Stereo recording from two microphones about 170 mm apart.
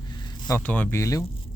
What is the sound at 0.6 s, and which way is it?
Speech, 10° left (ahead or behind).